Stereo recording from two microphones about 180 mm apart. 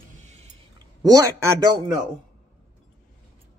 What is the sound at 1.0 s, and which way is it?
Speech, 20° right (ahead or behind).